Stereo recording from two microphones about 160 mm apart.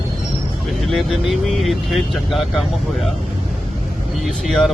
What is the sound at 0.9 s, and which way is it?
Speech, centre (ahead or behind).